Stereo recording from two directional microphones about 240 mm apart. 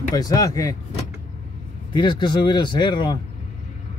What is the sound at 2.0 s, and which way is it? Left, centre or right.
Speech, centre.